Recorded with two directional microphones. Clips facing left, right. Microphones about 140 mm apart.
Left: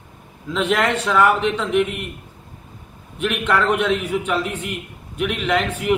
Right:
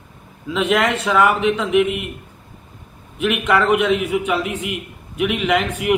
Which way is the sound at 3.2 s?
5° right (ahead or behind).